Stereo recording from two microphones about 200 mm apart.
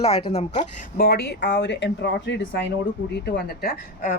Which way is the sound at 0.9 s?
50° left (ahead or behind).